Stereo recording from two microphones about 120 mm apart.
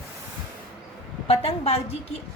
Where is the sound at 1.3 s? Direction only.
60° left (ahead or behind).